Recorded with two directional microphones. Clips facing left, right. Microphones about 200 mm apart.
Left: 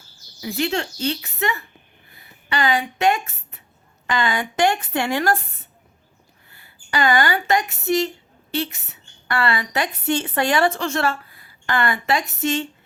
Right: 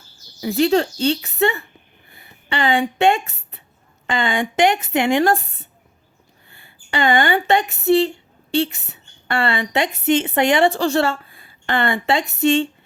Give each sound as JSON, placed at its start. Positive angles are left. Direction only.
{"t": 0.4, "sound": "speech", "side_deg": -35}
{"t": 2.1, "sound": "a sound", "side_deg": -25}
{"t": 4.0, "sound": "speech", "side_deg": -25}
{"t": 6.5, "sound": "speech", "side_deg": -25}